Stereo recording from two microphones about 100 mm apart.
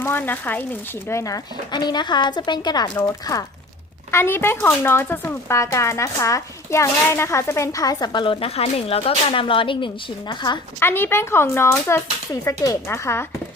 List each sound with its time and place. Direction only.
0.0 s speech: 20° left (ahead or behind)
1.2 s a woman's voice: 40° left (ahead or behind)
4.1 s speech: 25° left (ahead or behind); by 10.6 s 50° left (ahead or behind)
10.8 s speech: 25° left (ahead or behind)